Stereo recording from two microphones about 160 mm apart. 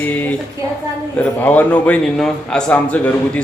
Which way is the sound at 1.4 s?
10° left (ahead or behind).